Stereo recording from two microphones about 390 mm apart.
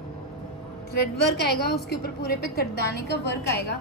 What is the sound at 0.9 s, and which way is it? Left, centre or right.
A woman's voice, left.